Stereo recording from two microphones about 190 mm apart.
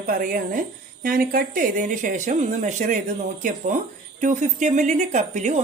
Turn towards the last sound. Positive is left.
turn(degrees=-40)  # may be behind; listen again after turning